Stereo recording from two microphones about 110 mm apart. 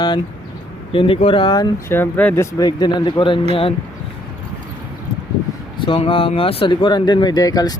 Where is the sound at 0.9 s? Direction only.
55° left (ahead or behind).